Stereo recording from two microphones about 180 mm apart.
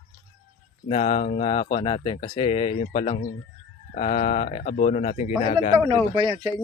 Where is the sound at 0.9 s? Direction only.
35° left (ahead or behind).